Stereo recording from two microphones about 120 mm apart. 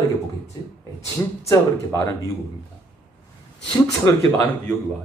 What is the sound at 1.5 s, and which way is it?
Speech, 25° left (ahead or behind).